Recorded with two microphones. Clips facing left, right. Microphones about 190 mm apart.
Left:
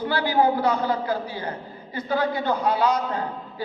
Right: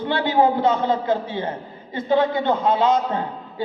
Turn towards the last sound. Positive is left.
turn(degrees=-25)  # may be behind; listen again after turning